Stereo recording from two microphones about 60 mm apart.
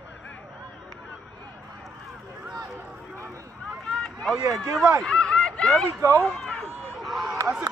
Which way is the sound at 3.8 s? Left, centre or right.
Centre.